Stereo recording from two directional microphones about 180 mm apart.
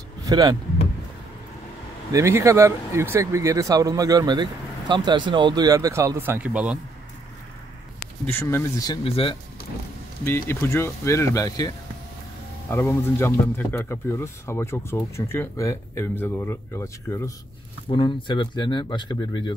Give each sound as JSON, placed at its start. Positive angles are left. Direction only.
{"t": 0.2, "sound": "speech", "side_deg": -20}
{"t": 2.1, "sound": "speech", "side_deg": -15}
{"t": 8.3, "sound": "speech", "side_deg": 15}
{"t": 9.0, "sound": "speech", "side_deg": 30}
{"t": 10.5, "sound": "speech", "side_deg": 15}
{"t": 17.8, "sound": "speech", "side_deg": 25}